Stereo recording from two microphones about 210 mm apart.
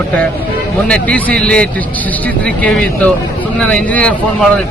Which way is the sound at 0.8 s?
5° left (ahead or behind).